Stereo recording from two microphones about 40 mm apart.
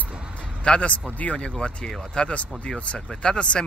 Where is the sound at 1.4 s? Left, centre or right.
Left.